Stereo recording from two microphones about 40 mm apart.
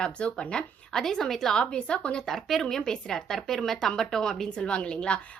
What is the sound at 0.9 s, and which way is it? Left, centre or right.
A woman's voice, centre.